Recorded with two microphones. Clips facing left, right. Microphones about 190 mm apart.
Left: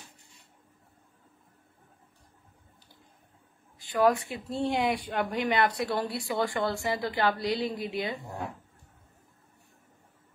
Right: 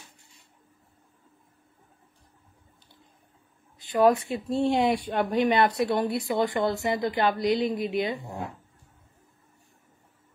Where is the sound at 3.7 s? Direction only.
20° right (ahead or behind).